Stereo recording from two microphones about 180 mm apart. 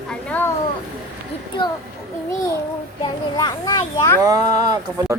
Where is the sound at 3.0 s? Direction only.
20° left (ahead or behind).